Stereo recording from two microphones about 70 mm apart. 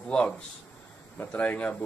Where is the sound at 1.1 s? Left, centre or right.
Left.